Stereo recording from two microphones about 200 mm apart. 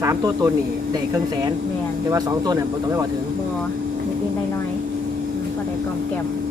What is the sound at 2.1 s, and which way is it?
Speech, 15° right (ahead or behind).